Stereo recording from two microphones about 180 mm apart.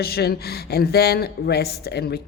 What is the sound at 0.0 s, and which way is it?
Speech, 60° left (ahead or behind).